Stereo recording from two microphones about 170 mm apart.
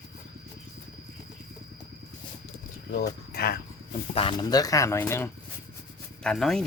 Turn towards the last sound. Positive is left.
turn(degrees=0)  # may be behind; listen again after turning